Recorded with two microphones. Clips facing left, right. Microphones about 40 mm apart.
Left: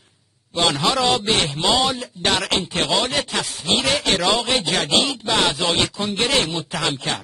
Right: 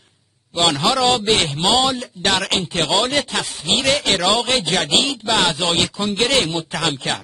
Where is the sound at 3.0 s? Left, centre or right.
Centre.